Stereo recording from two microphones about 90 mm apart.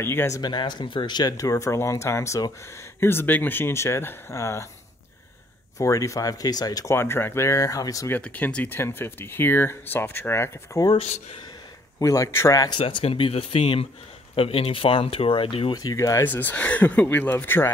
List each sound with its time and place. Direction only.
0.0 s speech: 25° left (ahead or behind)
0.4 s speech: 55° left (ahead or behind)
1.3 s speech: 40° left (ahead or behind)
5.8 s speech: 35° left (ahead or behind)
6.9 s speech: 25° left (ahead or behind)
8.1 s speech: 15° left (ahead or behind)
12.0 s speech: 35° left (ahead or behind)
12.8 s speech: 90° left
15.7 s speech: 45° left (ahead or behind)
16.3 s speech: 20° left (ahead or behind)